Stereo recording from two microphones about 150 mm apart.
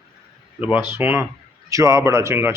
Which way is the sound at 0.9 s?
15° right (ahead or behind).